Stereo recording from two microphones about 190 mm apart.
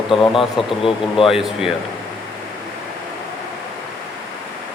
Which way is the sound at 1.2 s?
Centre (ahead or behind).